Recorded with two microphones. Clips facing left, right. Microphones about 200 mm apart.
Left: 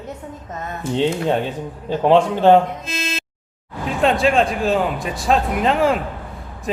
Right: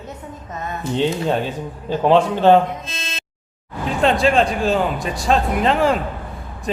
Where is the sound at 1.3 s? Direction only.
20° left (ahead or behind).